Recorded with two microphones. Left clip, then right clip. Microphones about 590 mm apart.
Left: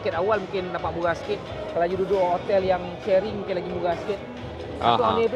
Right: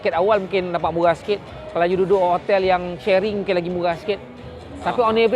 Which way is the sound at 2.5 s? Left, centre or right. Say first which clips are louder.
Right 4 dB; right.